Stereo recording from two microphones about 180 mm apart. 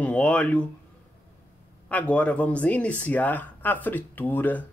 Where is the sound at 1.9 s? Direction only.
10° left (ahead or behind).